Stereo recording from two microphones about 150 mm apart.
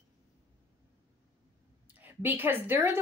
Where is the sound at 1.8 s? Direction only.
10° right (ahead or behind).